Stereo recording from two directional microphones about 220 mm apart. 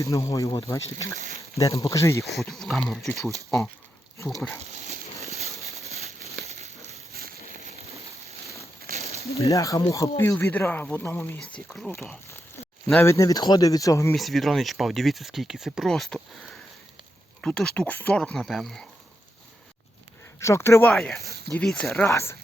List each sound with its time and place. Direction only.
0.0 s speech: 15° left (ahead or behind)
2.5 s speech: centre (ahead or behind)
4.4 s speech: 5° left (ahead or behind)
4.9 s a sound: 30° right (ahead or behind)
7.1 s a sound: 45° right (ahead or behind)
9.0 s snake: 30° right (ahead or behind)
9.3 s speech: 15° left (ahead or behind)
12.9 s speech: 10° left (ahead or behind)
14.2 s speech: centre (ahead or behind)
20.4 s speech: 10° left (ahead or behind)